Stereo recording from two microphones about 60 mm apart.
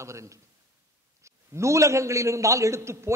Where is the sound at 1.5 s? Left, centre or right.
Right.